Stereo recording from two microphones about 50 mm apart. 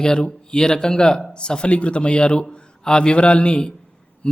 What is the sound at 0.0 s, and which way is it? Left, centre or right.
A man's voice, centre.